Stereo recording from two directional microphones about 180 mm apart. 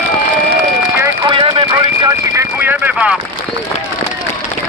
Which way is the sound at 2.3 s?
10° right (ahead or behind).